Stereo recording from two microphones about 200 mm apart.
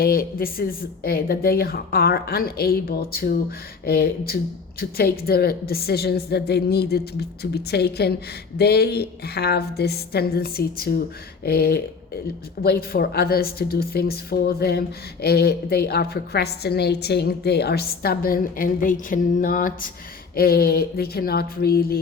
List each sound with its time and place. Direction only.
0.0 s speech: 50° left (ahead or behind)